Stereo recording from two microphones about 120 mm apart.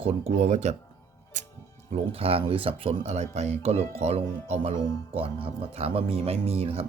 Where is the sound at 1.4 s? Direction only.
90° right.